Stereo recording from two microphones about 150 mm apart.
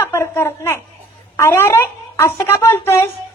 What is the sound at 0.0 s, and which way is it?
A woman's voice, 15° left (ahead or behind).